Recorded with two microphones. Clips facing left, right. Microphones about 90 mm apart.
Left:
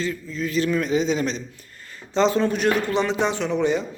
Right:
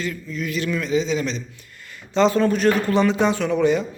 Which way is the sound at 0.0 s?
25° left (ahead or behind).